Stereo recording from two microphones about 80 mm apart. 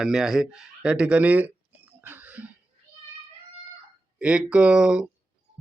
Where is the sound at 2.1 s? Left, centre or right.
Right.